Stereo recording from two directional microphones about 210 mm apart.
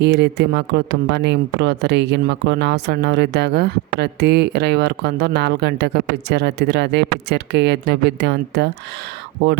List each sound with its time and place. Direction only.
0.0 s speech: 55° right (ahead or behind)